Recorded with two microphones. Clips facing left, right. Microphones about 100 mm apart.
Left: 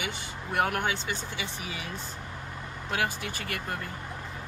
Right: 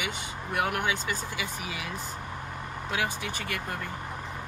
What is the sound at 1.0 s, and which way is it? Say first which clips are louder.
Speech: right 2 dB; 25° left (ahead or behind).